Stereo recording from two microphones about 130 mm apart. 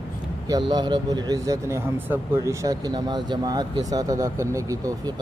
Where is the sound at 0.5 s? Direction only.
35° right (ahead or behind).